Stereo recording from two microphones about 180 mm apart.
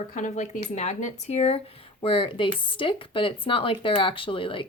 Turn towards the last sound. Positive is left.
turn(degrees=30)  # may be behind; listen again after turning